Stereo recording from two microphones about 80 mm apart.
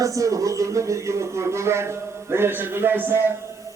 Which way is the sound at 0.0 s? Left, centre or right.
Right.